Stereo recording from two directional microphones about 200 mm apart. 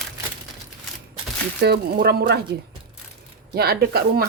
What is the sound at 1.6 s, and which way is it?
Speech, 50° right (ahead or behind).